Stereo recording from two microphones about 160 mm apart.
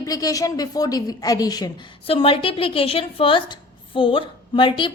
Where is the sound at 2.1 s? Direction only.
35° left (ahead or behind).